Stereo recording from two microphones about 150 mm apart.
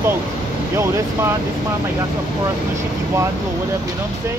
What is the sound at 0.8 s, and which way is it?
Speech, 20° right (ahead or behind).